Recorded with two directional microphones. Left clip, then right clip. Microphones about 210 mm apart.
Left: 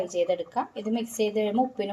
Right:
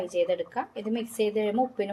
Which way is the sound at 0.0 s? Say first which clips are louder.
Even; centre (ahead or behind).